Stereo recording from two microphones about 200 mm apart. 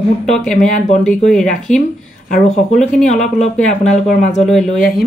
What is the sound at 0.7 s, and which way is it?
Speech, 40° left (ahead or behind).